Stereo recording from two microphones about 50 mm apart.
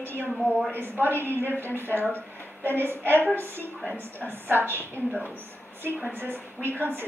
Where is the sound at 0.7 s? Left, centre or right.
Right.